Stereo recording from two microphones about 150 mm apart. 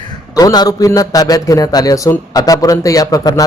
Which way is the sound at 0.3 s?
25° left (ahead or behind).